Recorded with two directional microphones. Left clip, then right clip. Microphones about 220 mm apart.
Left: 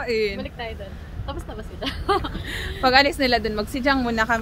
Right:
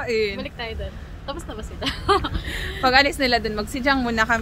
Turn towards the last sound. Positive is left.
turn(degrees=0)  # may be behind; listen again after turning